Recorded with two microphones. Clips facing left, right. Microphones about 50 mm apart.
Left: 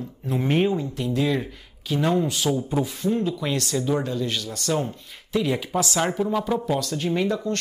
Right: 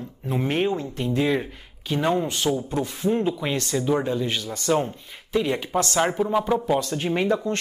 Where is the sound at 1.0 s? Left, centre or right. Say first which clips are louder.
Right 1 dB; centre.